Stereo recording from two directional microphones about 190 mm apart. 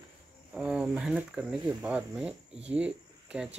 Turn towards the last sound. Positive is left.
turn(degrees=-5)  # may be behind; listen again after turning